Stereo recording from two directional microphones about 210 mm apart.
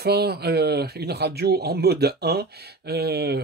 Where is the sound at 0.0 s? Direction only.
50° right (ahead or behind).